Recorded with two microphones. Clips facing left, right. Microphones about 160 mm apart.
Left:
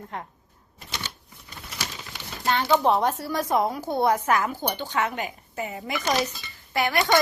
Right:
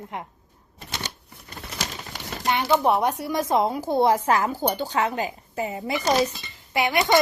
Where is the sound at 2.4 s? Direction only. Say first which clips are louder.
Even; 15° right (ahead or behind); by 6.2 s 30° right (ahead or behind).